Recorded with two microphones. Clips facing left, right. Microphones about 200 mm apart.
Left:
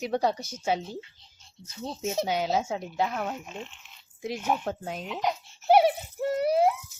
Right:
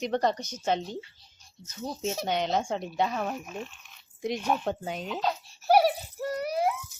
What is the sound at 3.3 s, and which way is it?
Speech, 20° left (ahead or behind).